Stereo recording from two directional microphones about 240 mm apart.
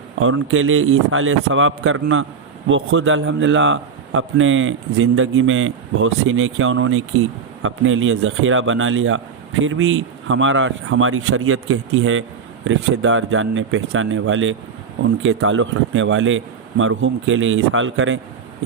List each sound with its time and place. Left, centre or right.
0.2 s a man's voice: right